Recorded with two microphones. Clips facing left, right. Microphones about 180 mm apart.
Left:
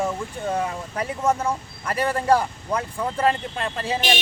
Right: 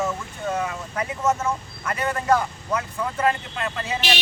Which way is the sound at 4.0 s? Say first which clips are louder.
Left 2 dB; 50° left (ahead or behind).